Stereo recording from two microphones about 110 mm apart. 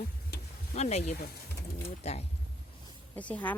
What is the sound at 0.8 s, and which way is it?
Speech, 90° left.